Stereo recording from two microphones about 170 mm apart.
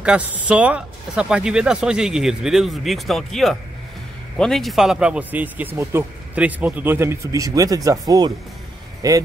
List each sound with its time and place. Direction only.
0.0 s speech: 5° right (ahead or behind)
9.0 s speech: 20° right (ahead or behind)